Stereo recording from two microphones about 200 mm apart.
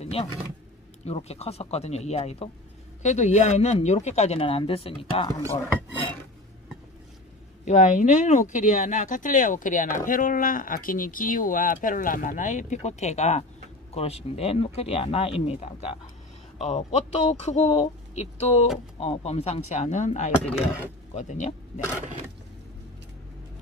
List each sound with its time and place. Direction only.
0.0 s a sound: 30° left (ahead or behind)
1.0 s speech: 30° left (ahead or behind)
7.6 s speech: 35° left (ahead or behind)